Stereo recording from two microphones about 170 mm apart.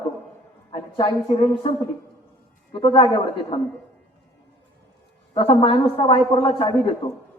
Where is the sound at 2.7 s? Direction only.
30° left (ahead or behind).